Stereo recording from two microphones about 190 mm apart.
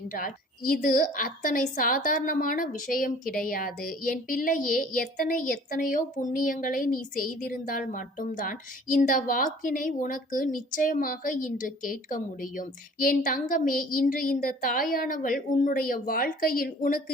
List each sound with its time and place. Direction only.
0.1 s a woman's voice: 45° left (ahead or behind)